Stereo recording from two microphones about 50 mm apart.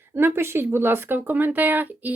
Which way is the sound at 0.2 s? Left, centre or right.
Right.